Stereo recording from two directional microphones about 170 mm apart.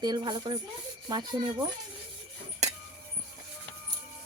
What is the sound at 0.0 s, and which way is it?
Dishes, 25° right (ahead or behind).